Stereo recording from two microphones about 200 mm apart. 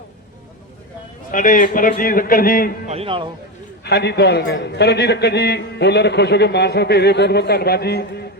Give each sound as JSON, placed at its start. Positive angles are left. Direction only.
{"t": 1.3, "sound": "a man's voice", "side_deg": 40}
{"t": 2.8, "sound": "speech", "side_deg": -30}
{"t": 3.8, "sound": "a man's voice", "side_deg": 55}